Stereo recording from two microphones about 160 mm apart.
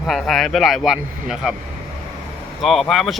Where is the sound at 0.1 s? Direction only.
Centre (ahead or behind).